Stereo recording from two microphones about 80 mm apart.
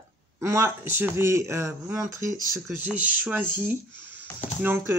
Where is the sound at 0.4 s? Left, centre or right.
Right.